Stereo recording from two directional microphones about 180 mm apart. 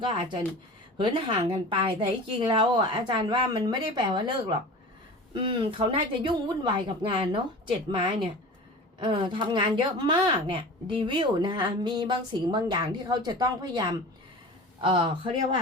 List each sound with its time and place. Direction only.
0.0 s a woman's voice: 25° right (ahead or behind)